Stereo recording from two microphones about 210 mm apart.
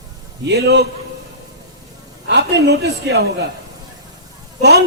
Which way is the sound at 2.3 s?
55° right (ahead or behind).